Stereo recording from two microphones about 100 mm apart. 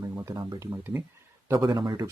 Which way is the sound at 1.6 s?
50° right (ahead or behind).